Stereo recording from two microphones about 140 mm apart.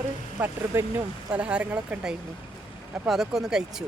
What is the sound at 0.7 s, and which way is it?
Speech, 15° right (ahead or behind).